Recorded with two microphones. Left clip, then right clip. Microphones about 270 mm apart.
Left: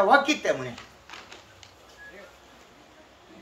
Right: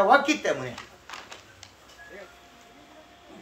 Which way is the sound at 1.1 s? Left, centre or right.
Right.